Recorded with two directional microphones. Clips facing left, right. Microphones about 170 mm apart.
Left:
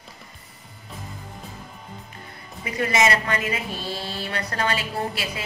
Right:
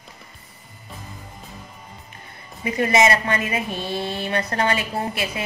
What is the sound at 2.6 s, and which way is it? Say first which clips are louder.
A woman's voice: right 4 dB; 25° right (ahead or behind).